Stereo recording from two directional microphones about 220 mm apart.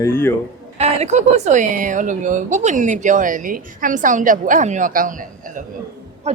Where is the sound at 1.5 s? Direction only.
35° right (ahead or behind).